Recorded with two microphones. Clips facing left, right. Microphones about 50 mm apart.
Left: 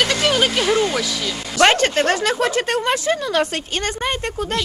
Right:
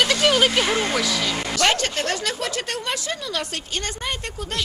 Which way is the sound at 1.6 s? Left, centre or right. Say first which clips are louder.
Left 8 dB; left.